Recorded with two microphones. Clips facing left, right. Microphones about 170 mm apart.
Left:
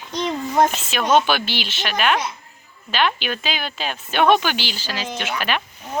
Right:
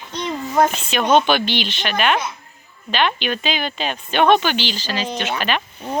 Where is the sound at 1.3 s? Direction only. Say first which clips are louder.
Right 4 dB; 5° left (ahead or behind).